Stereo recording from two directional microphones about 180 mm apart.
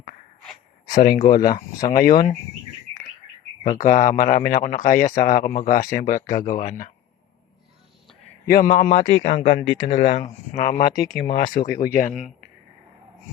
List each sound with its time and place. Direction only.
0.9 s speech: 50° left (ahead or behind)
3.6 s speech: 45° left (ahead or behind)
8.4 s speech: 50° left (ahead or behind)